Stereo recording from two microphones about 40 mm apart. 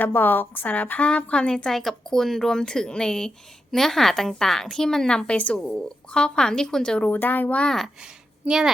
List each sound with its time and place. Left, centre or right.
0.0 s a woman's voice: left
0.7 s speech: left
1.7 s a woman's voice: centre
7.0 s speech: left
8.4 s a child's voice: centre